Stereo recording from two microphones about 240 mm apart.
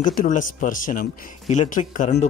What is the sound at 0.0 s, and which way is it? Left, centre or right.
Speech, left.